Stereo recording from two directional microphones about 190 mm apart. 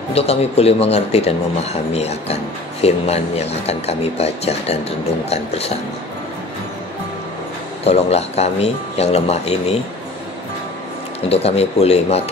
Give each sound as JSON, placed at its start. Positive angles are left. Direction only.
{"t": 0.1, "sound": "speech", "side_deg": 35}
{"t": 7.8, "sound": "speech", "side_deg": 35}
{"t": 11.2, "sound": "speech", "side_deg": 30}